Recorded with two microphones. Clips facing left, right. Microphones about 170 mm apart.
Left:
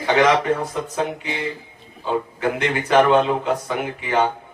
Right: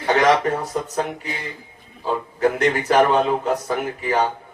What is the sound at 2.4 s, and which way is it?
A man's voice, 40° right (ahead or behind).